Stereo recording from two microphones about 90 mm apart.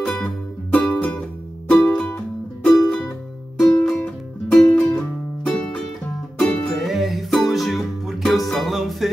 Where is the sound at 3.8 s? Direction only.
5° left (ahead or behind).